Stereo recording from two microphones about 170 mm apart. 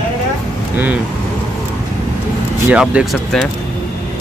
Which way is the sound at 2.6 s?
5° right (ahead or behind).